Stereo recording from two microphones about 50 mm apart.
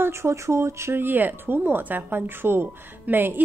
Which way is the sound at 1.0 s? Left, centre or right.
Right.